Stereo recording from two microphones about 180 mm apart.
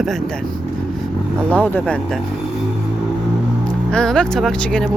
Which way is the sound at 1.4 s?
10° left (ahead or behind).